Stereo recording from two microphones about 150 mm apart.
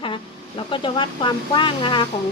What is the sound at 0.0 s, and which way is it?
A woman's voice, 35° left (ahead or behind).